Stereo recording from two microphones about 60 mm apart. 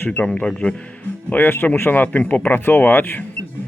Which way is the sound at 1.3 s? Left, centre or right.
Left.